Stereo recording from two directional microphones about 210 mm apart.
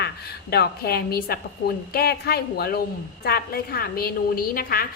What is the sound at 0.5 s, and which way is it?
A woman's voice, 50° left (ahead or behind).